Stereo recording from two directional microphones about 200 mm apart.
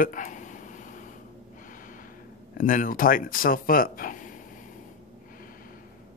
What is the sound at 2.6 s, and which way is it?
Speech, 45° left (ahead or behind).